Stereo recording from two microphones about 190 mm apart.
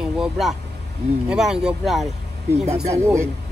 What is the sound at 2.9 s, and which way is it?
Speech, 15° right (ahead or behind).